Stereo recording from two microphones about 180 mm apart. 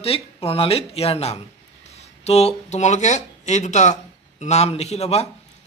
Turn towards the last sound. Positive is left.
turn(degrees=35)  # may be behind; listen again after turning